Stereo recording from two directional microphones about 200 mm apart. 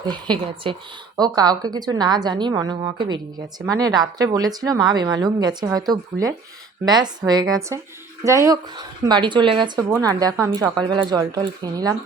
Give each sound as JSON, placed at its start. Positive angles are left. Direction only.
{"t": 0.0, "sound": "speech", "side_deg": -20}